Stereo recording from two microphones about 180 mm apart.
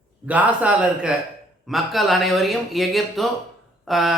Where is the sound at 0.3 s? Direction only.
10° right (ahead or behind).